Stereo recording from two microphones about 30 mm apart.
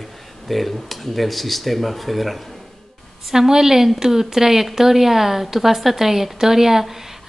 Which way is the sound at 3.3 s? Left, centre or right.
Centre.